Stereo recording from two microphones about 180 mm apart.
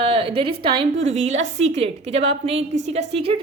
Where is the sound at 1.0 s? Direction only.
90° right.